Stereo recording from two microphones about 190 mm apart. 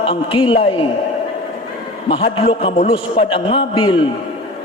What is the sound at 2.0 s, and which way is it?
A man's voice, 30° left (ahead or behind).